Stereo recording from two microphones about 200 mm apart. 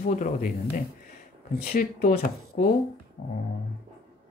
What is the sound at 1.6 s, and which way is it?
Speech, 50° left (ahead or behind).